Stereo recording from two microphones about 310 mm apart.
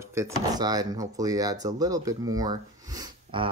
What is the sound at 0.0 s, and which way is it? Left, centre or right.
Speech, centre.